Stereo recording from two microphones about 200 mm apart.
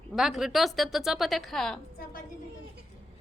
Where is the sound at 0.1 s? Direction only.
Centre (ahead or behind).